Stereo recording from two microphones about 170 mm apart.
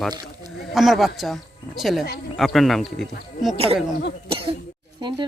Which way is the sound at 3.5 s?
35° right (ahead or behind).